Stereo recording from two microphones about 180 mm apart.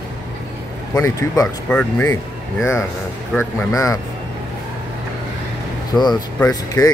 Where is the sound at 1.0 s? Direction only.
15° left (ahead or behind).